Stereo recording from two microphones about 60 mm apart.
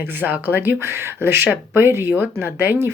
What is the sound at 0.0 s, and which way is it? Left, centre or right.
Speech, right.